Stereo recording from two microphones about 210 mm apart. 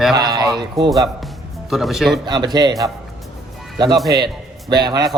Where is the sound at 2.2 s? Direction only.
20° right (ahead or behind).